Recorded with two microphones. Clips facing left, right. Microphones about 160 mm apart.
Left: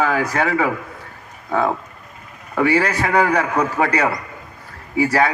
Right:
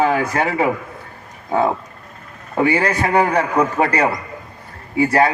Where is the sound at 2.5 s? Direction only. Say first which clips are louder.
Even; 25° right (ahead or behind).